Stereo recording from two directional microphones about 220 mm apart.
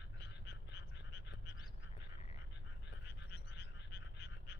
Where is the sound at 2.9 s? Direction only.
55° left (ahead or behind).